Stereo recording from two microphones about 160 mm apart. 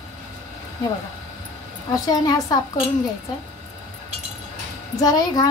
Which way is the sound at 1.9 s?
20° left (ahead or behind).